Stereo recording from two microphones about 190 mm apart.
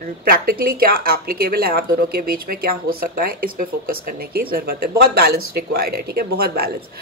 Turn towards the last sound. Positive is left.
turn(degrees=-55)  # may be behind; listen again after turning